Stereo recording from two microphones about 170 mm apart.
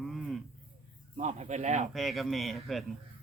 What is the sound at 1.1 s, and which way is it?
Speech, 45° right (ahead or behind).